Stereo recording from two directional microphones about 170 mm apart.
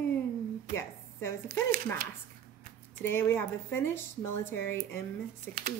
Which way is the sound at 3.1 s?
15° left (ahead or behind).